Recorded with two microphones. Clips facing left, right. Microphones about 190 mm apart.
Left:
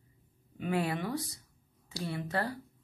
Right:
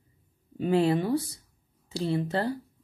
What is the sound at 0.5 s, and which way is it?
A woman's voice, 30° right (ahead or behind).